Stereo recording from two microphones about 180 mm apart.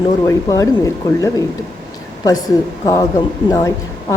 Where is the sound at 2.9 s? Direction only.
20° left (ahead or behind).